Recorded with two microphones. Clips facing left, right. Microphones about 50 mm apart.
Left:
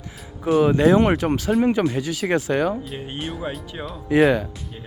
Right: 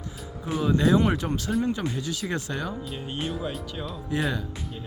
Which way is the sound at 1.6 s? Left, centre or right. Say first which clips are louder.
Left 8 dB; left.